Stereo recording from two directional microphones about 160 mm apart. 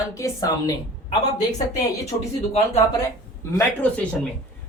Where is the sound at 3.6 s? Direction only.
10° left (ahead or behind).